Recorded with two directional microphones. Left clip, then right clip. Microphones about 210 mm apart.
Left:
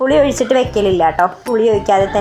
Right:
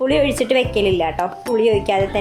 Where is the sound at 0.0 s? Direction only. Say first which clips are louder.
Left 4 dB; centre (ahead or behind).